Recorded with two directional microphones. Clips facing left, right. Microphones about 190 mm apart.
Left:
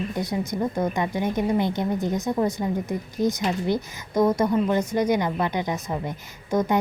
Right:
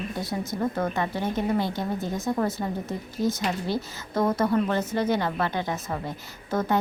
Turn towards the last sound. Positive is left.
turn(degrees=15)  # may be behind; listen again after turning